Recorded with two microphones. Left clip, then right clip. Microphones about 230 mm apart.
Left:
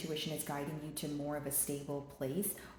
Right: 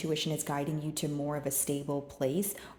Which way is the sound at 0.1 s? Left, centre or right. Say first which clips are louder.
Right 7 dB; right.